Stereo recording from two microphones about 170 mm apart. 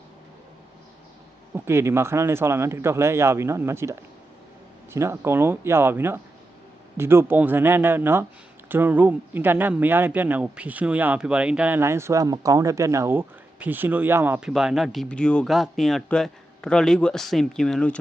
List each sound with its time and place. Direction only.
1.5 s speech: 15° right (ahead or behind); by 17.9 s 5° left (ahead or behind)